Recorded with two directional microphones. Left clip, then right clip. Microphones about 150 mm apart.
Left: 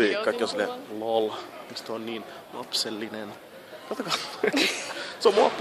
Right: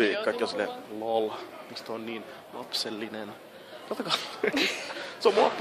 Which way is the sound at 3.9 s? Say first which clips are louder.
Even; 15° right (ahead or behind).